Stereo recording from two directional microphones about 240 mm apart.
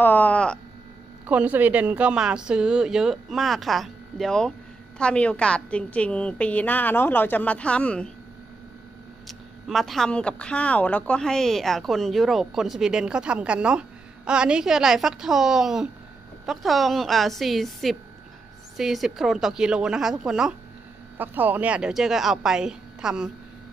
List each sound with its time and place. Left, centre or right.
0.0 s a sound: centre
1.2 s speech: centre
9.7 s speech: centre